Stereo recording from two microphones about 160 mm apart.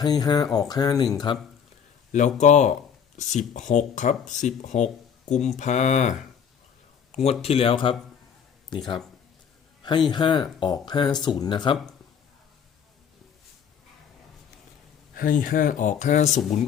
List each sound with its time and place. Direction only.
0.0 s speech: 25° left (ahead or behind)
2.1 s speech: 50° left (ahead or behind); by 9.0 s 30° left (ahead or behind)
10.1 s speech: 30° left (ahead or behind)
15.1 s speech: 60° left (ahead or behind)